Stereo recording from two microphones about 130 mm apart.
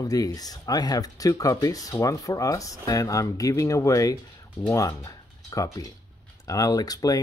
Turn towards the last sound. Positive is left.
turn(degrees=30)  # may be behind; listen again after turning